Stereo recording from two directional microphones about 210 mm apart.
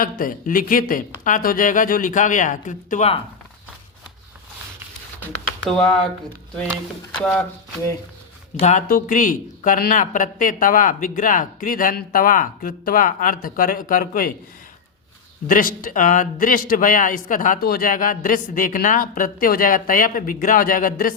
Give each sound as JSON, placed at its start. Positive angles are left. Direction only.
{"t": 0.0, "sound": "speech", "side_deg": 40}
{"t": 5.6, "sound": "speech", "side_deg": 0}
{"t": 7.2, "sound": "speech", "side_deg": 5}
{"t": 8.6, "sound": "speech", "side_deg": 40}
{"t": 15.4, "sound": "speech", "side_deg": 40}